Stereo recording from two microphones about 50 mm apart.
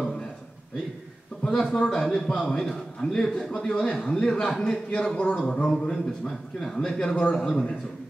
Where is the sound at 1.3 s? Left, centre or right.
Centre.